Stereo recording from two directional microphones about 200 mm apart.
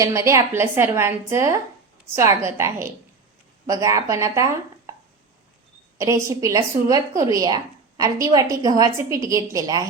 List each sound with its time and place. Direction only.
0.0 s a woman's voice: 15° right (ahead or behind)
6.0 s a woman's voice: 15° right (ahead or behind)